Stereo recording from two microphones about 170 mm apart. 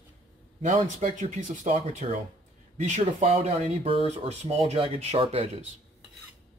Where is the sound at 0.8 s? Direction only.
45° right (ahead or behind).